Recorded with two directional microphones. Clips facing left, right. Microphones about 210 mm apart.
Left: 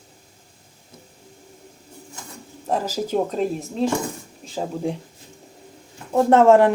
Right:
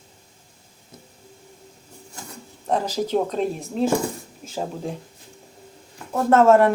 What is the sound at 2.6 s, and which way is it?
A woman's voice, 5° left (ahead or behind).